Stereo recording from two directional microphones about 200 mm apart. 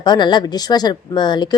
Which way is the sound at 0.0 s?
20° left (ahead or behind).